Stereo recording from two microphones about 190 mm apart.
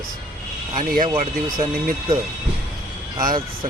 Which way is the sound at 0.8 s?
45° right (ahead or behind).